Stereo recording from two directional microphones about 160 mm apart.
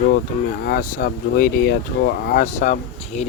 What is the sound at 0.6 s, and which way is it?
Speech, 65° left (ahead or behind).